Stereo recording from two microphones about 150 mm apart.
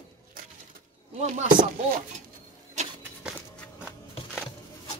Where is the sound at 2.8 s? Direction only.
50° right (ahead or behind).